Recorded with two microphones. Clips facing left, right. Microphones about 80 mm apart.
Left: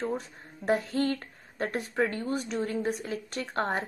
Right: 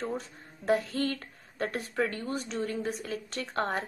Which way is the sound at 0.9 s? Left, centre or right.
Left.